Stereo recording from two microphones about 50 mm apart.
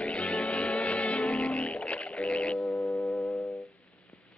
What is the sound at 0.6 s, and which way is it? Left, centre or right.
Music, left.